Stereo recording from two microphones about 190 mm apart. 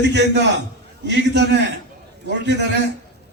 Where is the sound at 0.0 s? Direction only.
65° right (ahead or behind).